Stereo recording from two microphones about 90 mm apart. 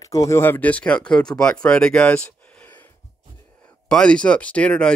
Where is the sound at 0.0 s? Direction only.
40° left (ahead or behind).